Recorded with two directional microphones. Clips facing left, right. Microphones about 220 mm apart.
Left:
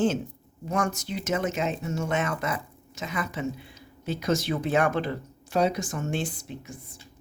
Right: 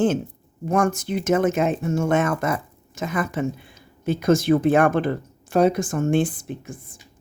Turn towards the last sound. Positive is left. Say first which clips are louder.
# right 6 dB
turn(degrees=-50)  # may be behind; listen again after turning